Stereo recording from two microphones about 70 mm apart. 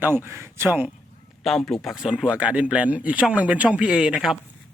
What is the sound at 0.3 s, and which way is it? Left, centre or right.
Speech, right.